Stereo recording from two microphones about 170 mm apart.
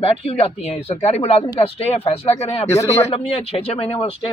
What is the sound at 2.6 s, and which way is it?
Speech, 15° left (ahead or behind).